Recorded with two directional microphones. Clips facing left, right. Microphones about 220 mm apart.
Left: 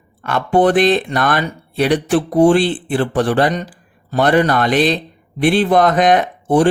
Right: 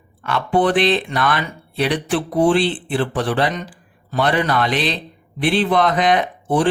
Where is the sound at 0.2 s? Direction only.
45° left (ahead or behind).